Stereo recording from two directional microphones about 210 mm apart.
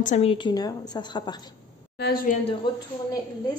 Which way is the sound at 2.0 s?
45° left (ahead or behind).